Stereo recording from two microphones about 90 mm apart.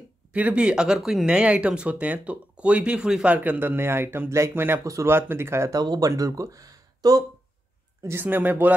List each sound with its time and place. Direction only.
0.3 s speech: 15° right (ahead or behind); by 5.8 s 30° right (ahead or behind)
5.8 s speech: 45° right (ahead or behind)
8.0 s speech: 25° right (ahead or behind)